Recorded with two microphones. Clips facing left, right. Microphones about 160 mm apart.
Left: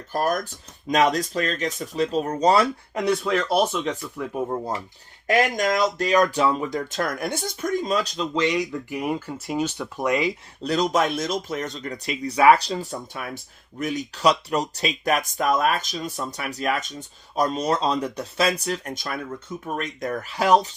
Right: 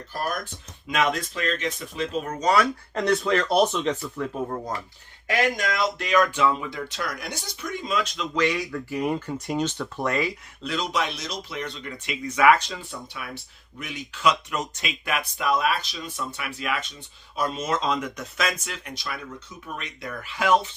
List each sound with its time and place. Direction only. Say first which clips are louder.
0.1 s speech: left 6 dB; 45° left (ahead or behind)
2.9 s speech: right 1 dB; 5° left (ahead or behind)
5.3 s speech: left 4 dB; 40° left (ahead or behind)
8.4 s speech: left 2 dB; 20° left (ahead or behind)
10.6 s speech: left 6 dB; 40° left (ahead or behind)